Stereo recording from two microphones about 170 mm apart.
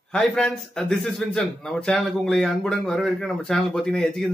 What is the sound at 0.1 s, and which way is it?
Speech, 5° left (ahead or behind).